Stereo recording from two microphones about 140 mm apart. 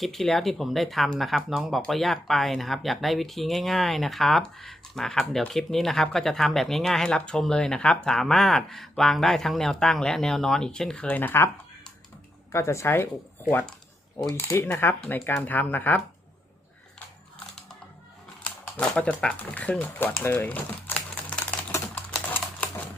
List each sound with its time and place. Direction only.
0.0 s speech: centre (ahead or behind)
18.4 s speech: 10° left (ahead or behind)